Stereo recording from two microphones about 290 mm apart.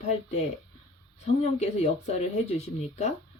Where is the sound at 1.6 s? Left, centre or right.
Left.